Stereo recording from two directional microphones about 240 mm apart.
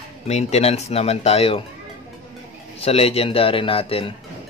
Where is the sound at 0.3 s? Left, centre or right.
Left.